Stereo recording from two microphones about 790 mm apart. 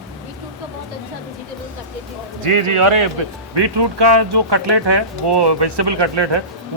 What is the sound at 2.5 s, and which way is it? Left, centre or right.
Speech, right.